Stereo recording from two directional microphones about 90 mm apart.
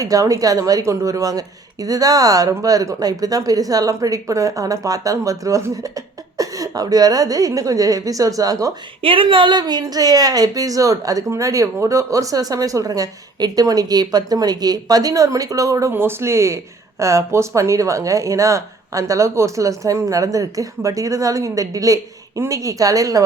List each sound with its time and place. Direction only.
0.0 s speech: 40° right (ahead or behind)
9.0 s a woman's voice: 80° right; by 15.9 s 40° right (ahead or behind)
15.9 s speech: 25° right (ahead or behind)